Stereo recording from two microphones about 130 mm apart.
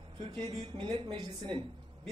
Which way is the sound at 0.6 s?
40° right (ahead or behind).